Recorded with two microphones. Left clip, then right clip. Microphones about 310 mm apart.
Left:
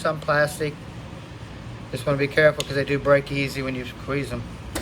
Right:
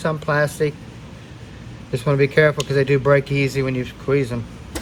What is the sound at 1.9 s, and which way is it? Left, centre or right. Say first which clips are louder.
Speech: right 5 dB; centre.